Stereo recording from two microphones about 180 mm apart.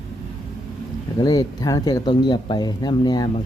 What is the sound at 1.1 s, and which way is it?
Speech, 20° left (ahead or behind).